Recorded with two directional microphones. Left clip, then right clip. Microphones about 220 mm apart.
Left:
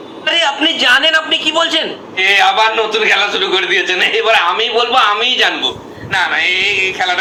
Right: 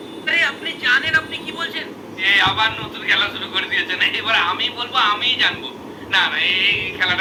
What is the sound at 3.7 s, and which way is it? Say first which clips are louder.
A man's voice: left 3 dB; 15° right (ahead or behind).